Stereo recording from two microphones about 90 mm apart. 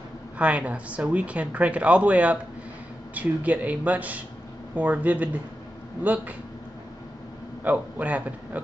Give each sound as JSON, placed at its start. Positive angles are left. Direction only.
{"t": 0.4, "sound": "speech", "side_deg": -15}
{"t": 7.6, "sound": "speech", "side_deg": -15}